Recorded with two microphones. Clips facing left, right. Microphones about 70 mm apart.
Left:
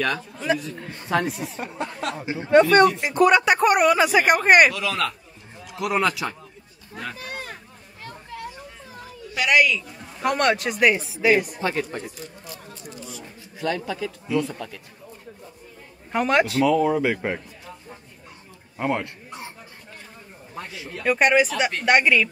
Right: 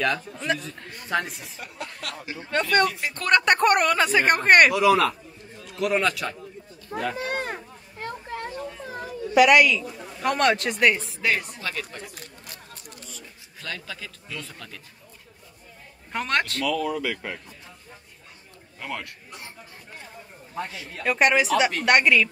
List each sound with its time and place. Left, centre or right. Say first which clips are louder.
0.0 s a man's voice: even; centre
1.6 s speech: left 4 dB; left
3.3 s a man's voice: even; centre
4.7 s speech: right 8 dB; centre
5.7 s a man's voice: left 1 dB; centre
6.9 s speech: right 6 dB; right
7.2 s a sound: right 6 dB; right
9.3 s a man's voice: right 3 dB; centre
11.6 s speech: left 7 dB; left
13.1 s speech: left 6 dB; centre
16.1 s a man's voice: left 6 dB; centre
16.6 s speech: left 7 dB; left
18.8 s speech: left 9 dB; left
20.9 s a man's voice: left 2 dB; centre